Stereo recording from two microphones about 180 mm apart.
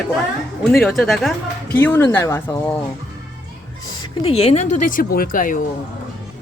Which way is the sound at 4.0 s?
30° left (ahead or behind).